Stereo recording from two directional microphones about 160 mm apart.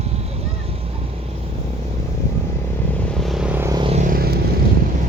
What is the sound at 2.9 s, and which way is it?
Vehicle, 5° left (ahead or behind).